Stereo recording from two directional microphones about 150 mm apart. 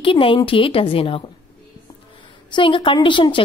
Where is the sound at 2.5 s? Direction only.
35° left (ahead or behind).